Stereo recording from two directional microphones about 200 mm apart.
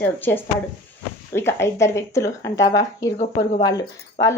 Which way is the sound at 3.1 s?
35° left (ahead or behind).